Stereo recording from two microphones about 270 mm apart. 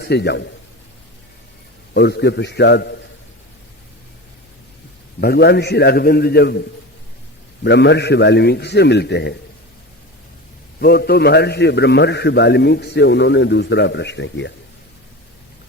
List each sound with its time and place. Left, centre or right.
0.0 s a man's voice: left
1.9 s a man's voice: left
5.2 s a man's voice: left
7.6 s a man's voice: left
10.8 s a man's voice: left